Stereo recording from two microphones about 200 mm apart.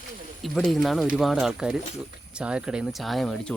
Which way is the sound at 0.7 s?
Centre (ahead or behind).